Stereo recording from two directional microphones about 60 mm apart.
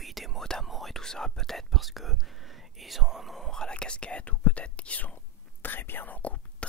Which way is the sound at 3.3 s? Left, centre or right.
Centre.